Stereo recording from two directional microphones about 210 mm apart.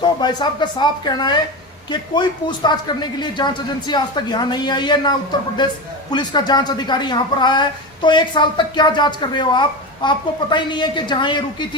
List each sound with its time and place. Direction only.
0.0 s a woman's voice: 20° left (ahead or behind)